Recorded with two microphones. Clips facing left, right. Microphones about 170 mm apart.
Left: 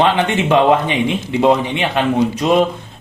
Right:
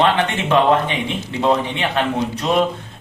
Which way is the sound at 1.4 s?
20° left (ahead or behind).